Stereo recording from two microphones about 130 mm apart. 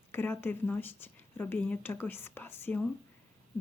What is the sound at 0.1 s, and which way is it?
Speech, 15° left (ahead or behind).